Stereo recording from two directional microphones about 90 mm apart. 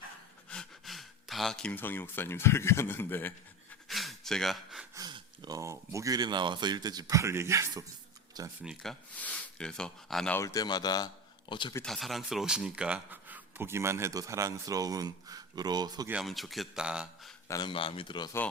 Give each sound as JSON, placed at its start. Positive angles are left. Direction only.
{"t": 0.5, "sound": "gasp", "side_deg": 5}
{"t": 1.7, "sound": "a man's voice", "side_deg": 20}
{"t": 3.8, "sound": "gasp", "side_deg": 0}
{"t": 5.5, "sound": "speech", "side_deg": -35}
{"t": 7.2, "sound": "speech", "side_deg": -30}
{"t": 8.4, "sound": "speech", "side_deg": -45}
{"t": 9.1, "sound": "speech", "side_deg": 15}
{"t": 10.3, "sound": "a man's voice", "side_deg": 40}
{"t": 11.8, "sound": "speech", "side_deg": 0}
{"t": 16.2, "sound": "speech", "side_deg": 0}
{"t": 16.8, "sound": "speech", "side_deg": -10}
{"t": 17.6, "sound": "speech", "side_deg": 70}